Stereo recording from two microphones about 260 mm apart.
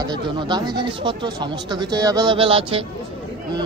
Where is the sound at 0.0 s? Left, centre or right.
Centre.